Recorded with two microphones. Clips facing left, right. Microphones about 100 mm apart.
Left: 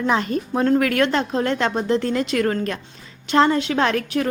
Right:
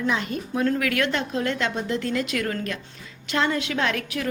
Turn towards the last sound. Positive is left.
turn(degrees=35)  # may be behind; listen again after turning